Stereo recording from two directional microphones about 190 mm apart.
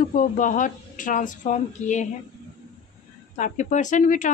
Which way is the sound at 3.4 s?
40° left (ahead or behind).